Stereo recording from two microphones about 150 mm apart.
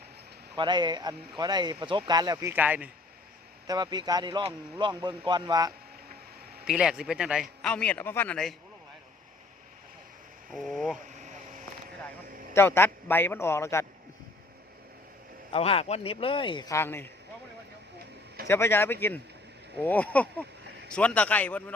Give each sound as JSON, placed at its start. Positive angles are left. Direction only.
{"t": 0.5, "sound": "speech", "side_deg": -30}
{"t": 3.7, "sound": "speech", "side_deg": -30}
{"t": 6.7, "sound": "speech", "side_deg": -5}
{"t": 7.6, "sound": "a man's voice", "side_deg": 10}
{"t": 10.5, "sound": "speech", "side_deg": 0}
{"t": 11.3, "sound": "vehicle", "side_deg": -60}
{"t": 12.5, "sound": "a man's voice", "side_deg": 15}
{"t": 15.5, "sound": "speech", "side_deg": 40}
{"t": 16.7, "sound": "a man's voice", "side_deg": 15}
{"t": 18.4, "sound": "a man's voice", "side_deg": 15}